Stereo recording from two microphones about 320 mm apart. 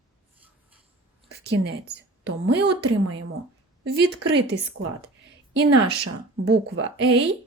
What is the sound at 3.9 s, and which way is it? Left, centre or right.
Speech, right.